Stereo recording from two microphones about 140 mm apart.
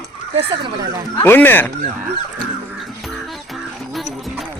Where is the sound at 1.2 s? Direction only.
15° left (ahead or behind).